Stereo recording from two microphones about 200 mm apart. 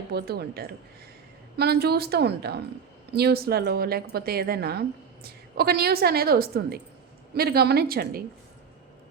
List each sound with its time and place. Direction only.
0.1 s a woman's voice: 50° right (ahead or behind)